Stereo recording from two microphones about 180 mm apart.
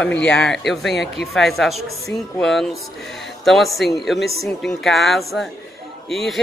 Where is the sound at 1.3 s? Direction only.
Centre (ahead or behind).